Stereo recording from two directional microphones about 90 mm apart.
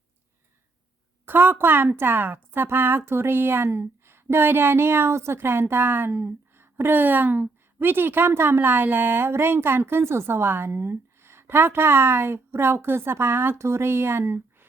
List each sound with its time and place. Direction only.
1.2 s speech: 25° right (ahead or behind)